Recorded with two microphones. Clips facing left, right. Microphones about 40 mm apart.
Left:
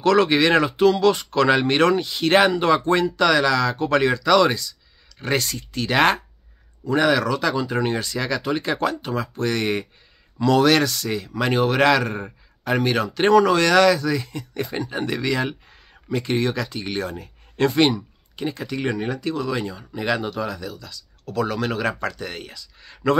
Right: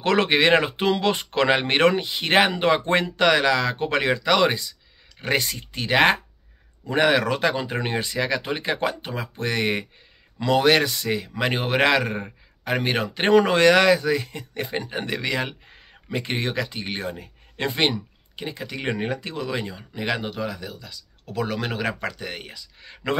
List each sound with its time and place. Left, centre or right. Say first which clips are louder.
0.0 s a man's voice: left 2 dB; right
6.8 s a man's voice: left 1 dB; right
7.7 s a man's voice: left 2 dB; centre